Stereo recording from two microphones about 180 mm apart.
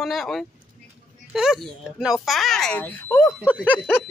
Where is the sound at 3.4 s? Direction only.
5° right (ahead or behind).